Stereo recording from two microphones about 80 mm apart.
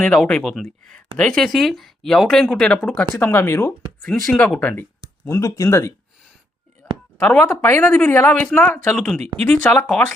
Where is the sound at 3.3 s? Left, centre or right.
Left.